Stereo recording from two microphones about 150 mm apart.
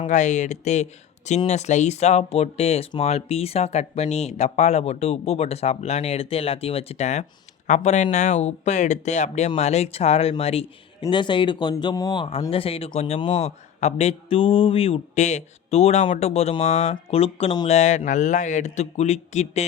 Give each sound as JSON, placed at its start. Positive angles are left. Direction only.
{"t": 0.1, "sound": "speech", "side_deg": 55}
{"t": 12.5, "sound": "speech", "side_deg": 40}
{"t": 17.7, "sound": "speech", "side_deg": 50}